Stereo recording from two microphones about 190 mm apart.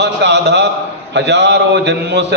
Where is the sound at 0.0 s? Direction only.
65° right (ahead or behind).